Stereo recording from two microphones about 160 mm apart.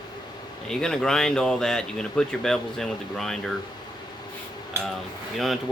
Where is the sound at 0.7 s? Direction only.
5° left (ahead or behind).